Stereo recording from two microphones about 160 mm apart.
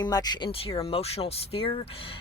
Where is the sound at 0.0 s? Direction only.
25° left (ahead or behind).